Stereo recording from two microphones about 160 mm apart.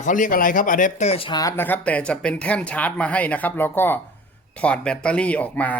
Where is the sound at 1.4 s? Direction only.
15° left (ahead or behind).